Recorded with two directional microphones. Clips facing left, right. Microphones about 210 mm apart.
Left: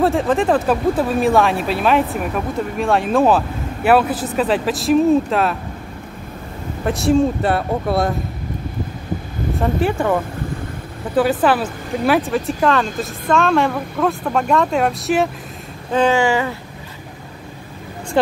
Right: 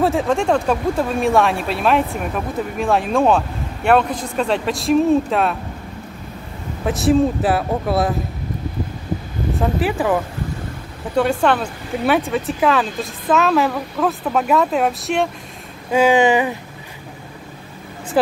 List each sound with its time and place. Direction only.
0.0 s speech: centre (ahead or behind)
6.8 s speech: centre (ahead or behind)
9.6 s speech: centre (ahead or behind)
15.9 s a sound: 10° right (ahead or behind)
18.2 s speech: 5° right (ahead or behind)